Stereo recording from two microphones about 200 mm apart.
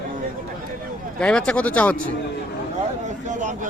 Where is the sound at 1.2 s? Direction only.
5° left (ahead or behind).